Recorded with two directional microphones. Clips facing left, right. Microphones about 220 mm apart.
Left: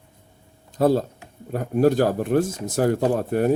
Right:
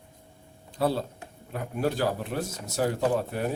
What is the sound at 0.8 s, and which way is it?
Speech, 45° left (ahead or behind).